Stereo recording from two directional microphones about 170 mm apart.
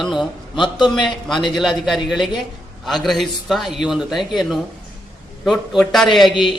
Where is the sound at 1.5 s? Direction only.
Centre (ahead or behind).